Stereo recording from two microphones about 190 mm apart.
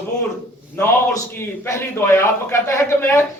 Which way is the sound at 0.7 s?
10° left (ahead or behind).